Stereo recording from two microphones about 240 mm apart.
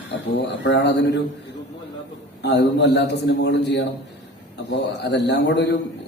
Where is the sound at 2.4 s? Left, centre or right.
Left.